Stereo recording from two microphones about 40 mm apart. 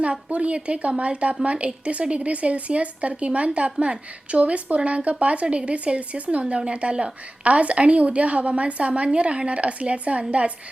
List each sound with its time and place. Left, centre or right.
0.0 s a woman's voice: right